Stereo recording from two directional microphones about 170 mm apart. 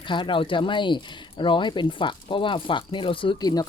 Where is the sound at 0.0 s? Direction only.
30° left (ahead or behind).